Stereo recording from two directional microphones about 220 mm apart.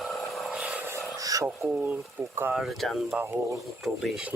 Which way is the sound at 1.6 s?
5° right (ahead or behind).